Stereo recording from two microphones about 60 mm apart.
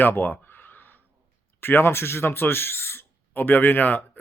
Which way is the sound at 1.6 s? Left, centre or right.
Left.